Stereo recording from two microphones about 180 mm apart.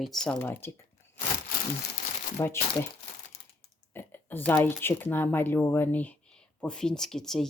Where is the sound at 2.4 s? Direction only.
15° left (ahead or behind).